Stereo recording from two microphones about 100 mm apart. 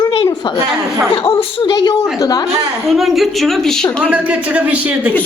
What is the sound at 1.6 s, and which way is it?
Speech, 50° left (ahead or behind).